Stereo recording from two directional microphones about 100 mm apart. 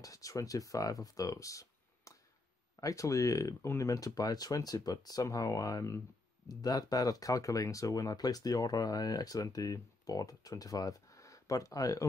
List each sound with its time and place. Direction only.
0.0 s speech: 35° left (ahead or behind)